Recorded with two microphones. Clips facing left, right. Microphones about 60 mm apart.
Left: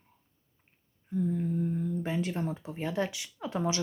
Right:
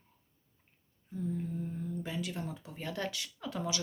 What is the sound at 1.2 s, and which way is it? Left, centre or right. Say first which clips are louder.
Humming: left 5 dB; left.